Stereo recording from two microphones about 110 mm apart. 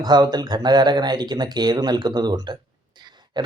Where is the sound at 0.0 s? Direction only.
40° right (ahead or behind).